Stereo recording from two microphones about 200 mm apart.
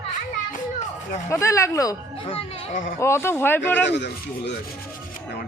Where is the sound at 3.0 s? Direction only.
10° left (ahead or behind).